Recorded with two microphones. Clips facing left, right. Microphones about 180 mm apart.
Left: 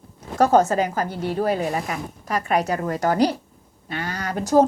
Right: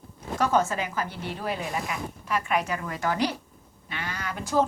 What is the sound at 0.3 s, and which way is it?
A woman's voice, 40° left (ahead or behind).